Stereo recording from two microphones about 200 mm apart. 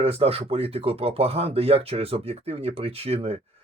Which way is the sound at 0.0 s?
30° right (ahead or behind).